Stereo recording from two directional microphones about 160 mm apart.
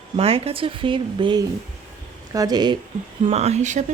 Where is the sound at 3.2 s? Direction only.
40° right (ahead or behind).